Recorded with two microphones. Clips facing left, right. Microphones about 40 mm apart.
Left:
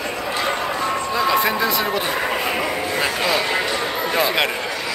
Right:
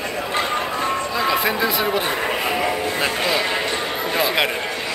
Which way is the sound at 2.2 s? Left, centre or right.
Centre.